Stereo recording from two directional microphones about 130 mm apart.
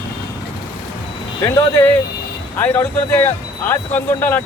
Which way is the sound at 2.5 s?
15° left (ahead or behind).